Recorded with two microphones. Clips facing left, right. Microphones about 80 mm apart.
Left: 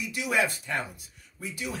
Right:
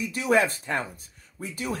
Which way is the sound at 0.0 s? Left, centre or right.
Right.